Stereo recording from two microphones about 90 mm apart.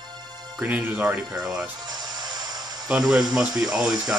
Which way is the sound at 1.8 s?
45° right (ahead or behind).